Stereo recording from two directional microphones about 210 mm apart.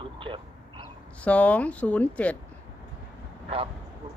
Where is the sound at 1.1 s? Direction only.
5° left (ahead or behind).